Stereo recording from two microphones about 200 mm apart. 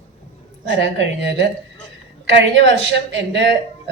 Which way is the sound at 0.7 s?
65° right (ahead or behind).